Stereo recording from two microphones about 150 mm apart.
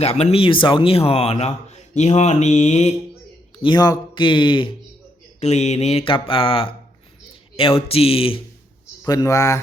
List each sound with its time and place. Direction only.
0.0 s a man's voice: 45° left (ahead or behind)
3.6 s speech: 30° left (ahead or behind)
5.4 s speech: 50° left (ahead or behind)
9.0 s speech: 20° left (ahead or behind)